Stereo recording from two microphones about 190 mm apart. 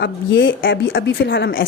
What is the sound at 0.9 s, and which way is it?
Speech, 55° left (ahead or behind).